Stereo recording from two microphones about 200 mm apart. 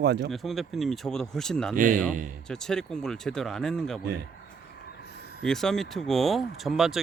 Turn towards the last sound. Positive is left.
turn(degrees=0)  # may be behind; listen again after turning